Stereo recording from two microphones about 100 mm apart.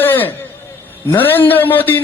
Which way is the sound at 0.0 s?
20° left (ahead or behind).